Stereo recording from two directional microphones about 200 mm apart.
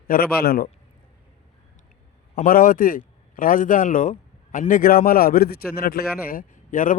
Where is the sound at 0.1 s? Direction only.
50° left (ahead or behind).